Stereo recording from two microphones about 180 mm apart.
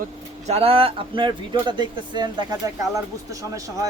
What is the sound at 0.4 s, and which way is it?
Speech, 35° right (ahead or behind).